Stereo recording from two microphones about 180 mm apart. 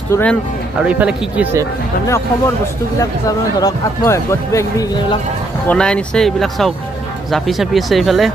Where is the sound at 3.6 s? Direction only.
20° left (ahead or behind).